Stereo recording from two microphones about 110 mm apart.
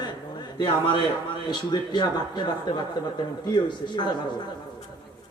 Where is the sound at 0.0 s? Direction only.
40° left (ahead or behind).